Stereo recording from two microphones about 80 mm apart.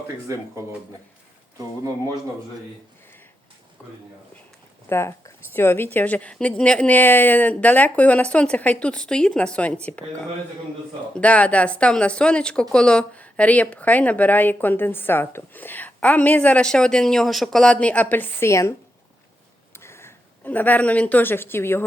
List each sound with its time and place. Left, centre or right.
1.5 s speech: right
3.8 s a woman's voice: centre
4.9 s a woman's voice: left; by 9.7 s centre
11.2 s a woman's voice: centre
18.4 s speech: left
19.7 s a sound: left
20.4 s a woman's voice: left